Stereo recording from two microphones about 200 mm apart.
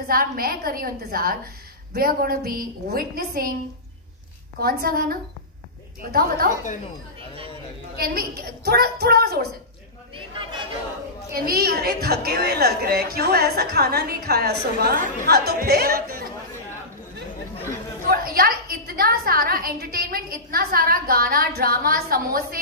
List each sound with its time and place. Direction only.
0.1 s a woman's voice: 50° right (ahead or behind)
4.6 s a woman's voice: 50° right (ahead or behind)
8.0 s a woman's voice: 50° right (ahead or behind)
11.4 s a woman's voice: 50° right (ahead or behind)
18.1 s a woman's voice: 45° right (ahead or behind)